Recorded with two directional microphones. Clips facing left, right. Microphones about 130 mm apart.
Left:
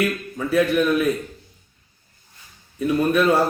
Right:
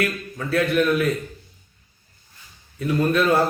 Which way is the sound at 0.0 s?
15° left (ahead or behind).